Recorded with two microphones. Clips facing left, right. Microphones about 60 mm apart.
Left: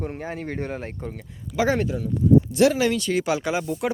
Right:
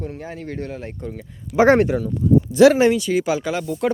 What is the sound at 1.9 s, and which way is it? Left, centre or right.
Speech, right.